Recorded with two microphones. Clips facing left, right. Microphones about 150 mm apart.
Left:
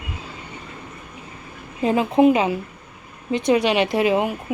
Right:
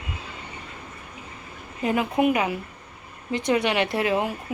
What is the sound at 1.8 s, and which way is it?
A woman's voice, 30° left (ahead or behind).